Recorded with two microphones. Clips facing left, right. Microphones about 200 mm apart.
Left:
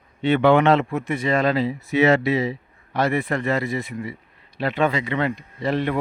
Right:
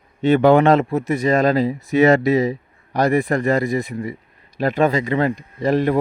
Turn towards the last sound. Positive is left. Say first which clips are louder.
# right 5 dB
turn(degrees=-45)  # may be behind; listen again after turning